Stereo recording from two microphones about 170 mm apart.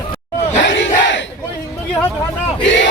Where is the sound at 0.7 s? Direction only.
90° left.